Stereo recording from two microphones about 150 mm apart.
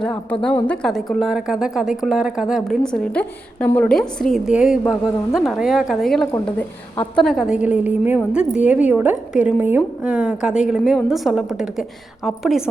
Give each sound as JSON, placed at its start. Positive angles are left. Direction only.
{"t": 0.0, "sound": "a woman's voice", "side_deg": 10}